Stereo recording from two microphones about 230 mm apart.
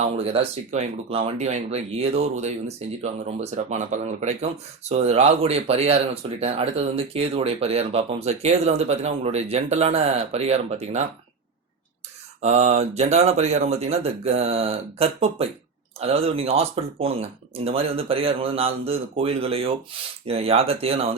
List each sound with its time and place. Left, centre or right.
0.0 s speech: right
12.4 s speech: right